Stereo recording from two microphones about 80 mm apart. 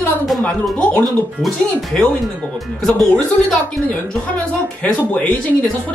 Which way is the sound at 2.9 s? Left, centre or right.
Centre.